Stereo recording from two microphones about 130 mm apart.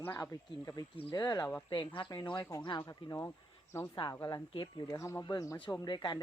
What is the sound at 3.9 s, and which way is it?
Speech, 35° left (ahead or behind).